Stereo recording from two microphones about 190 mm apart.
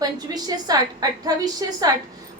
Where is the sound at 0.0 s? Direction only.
20° right (ahead or behind).